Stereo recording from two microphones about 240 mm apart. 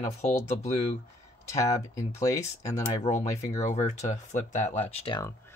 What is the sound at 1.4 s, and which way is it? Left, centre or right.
Speech, centre.